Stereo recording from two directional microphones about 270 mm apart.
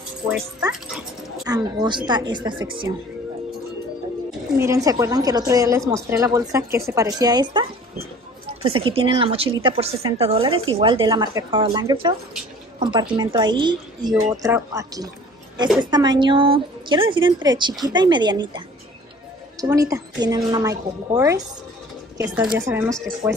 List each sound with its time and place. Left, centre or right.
1.4 s a woman's voice: centre
4.6 s a woman's voice: centre
8.6 s a woman's voice: centre
19.6 s a woman's voice: centre